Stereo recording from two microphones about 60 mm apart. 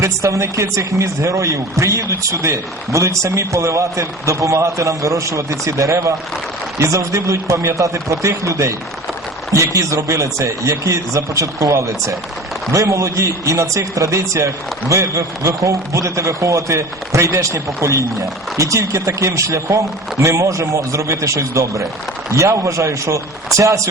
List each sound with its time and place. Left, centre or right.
0.0 s speech: right